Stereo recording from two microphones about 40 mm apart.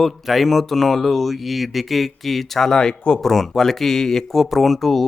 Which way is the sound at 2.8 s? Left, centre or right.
Left.